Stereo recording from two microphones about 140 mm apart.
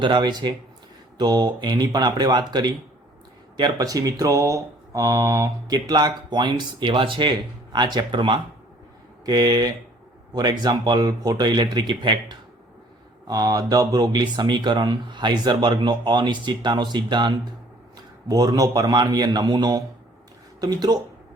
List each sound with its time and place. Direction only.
0.0 s a man's voice: 35° right (ahead or behind)